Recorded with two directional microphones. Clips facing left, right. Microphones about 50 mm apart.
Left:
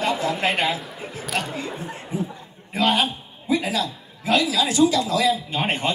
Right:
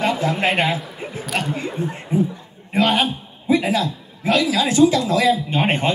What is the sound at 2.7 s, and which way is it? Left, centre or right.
A man's voice, right.